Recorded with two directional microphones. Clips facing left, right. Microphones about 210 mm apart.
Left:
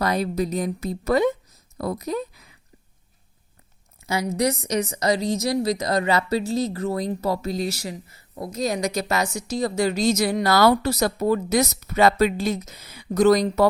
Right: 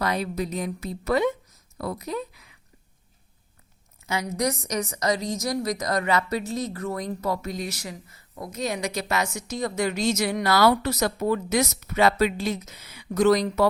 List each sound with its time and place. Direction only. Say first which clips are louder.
0.0 s speech: left 4 dB; 40° left (ahead or behind)
4.0 s a woman's voice: left 3 dB; 35° left (ahead or behind)